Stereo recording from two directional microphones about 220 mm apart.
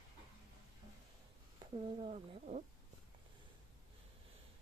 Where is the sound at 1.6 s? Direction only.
30° right (ahead or behind).